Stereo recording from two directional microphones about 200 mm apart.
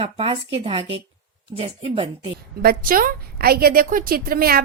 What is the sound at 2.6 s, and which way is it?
A woman's voice, 50° right (ahead or behind).